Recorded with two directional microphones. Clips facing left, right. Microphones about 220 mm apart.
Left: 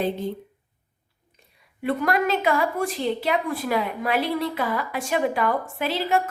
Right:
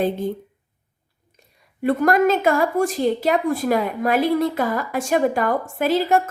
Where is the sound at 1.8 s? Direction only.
45° right (ahead or behind).